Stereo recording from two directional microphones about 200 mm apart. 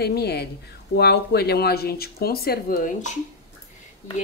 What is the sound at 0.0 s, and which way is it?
Speech, 55° left (ahead or behind).